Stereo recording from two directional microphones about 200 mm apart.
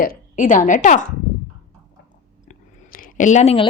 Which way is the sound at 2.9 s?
40° left (ahead or behind).